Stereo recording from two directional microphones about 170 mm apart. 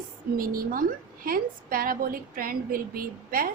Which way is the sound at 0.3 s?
55° right (ahead or behind).